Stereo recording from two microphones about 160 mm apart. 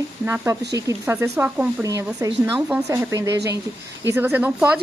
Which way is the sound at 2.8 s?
20° right (ahead or behind).